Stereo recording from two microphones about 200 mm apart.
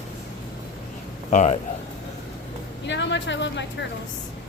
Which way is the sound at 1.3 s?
35° left (ahead or behind).